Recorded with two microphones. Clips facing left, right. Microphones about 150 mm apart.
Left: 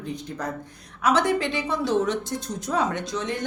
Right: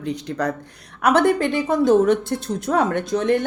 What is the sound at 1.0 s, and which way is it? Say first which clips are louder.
A woman's voice: right 5 dB; 55° right (ahead or behind).